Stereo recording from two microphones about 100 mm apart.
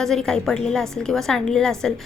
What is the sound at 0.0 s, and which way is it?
A woman's voice, 5° left (ahead or behind).